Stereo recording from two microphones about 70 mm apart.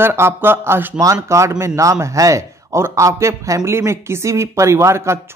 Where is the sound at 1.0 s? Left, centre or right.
Right.